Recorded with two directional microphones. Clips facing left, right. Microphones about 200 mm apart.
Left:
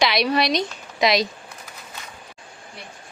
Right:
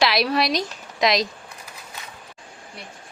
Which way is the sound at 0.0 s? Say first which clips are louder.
Even; centre (ahead or behind).